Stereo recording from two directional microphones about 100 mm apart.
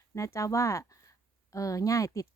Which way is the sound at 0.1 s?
30° left (ahead or behind).